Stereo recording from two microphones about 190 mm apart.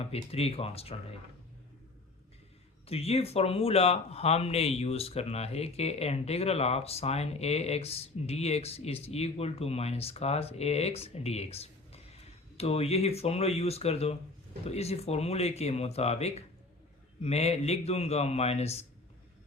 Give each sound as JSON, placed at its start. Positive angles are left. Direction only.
{"t": 0.0, "sound": "a man's voice", "side_deg": 30}
{"t": 2.8, "sound": "a man's voice", "side_deg": 30}